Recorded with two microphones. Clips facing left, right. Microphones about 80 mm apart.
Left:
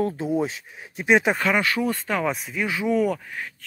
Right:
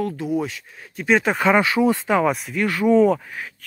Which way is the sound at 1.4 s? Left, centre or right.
Right.